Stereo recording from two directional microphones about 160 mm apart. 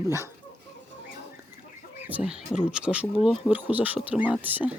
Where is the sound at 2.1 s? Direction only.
5° right (ahead or behind).